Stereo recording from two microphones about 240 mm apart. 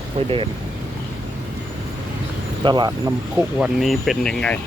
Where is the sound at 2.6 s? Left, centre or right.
Centre.